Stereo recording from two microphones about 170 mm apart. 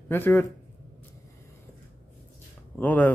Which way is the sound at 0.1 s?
10° left (ahead or behind).